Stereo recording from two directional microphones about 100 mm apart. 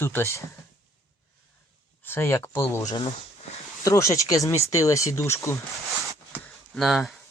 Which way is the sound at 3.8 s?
30° left (ahead or behind).